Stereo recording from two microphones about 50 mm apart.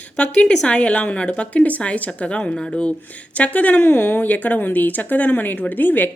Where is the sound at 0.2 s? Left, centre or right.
Left.